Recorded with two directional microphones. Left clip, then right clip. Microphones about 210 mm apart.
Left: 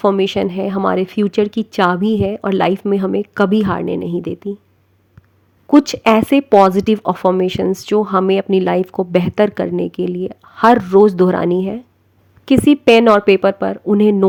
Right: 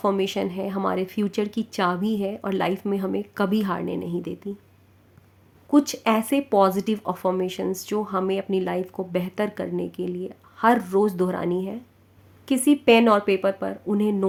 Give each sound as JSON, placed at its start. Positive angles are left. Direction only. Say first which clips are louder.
{"t": 0.0, "sound": "speech", "louder": "left 9 dB", "side_deg": 35}
{"t": 5.6, "sound": "speech", "louder": "left 9 dB", "side_deg": 35}